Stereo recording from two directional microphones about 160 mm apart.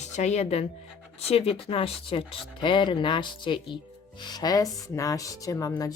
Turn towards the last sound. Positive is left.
turn(degrees=20)  # may be behind; listen again after turning